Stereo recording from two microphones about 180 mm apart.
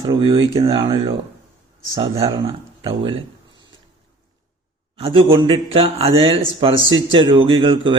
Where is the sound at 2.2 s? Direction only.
30° right (ahead or behind).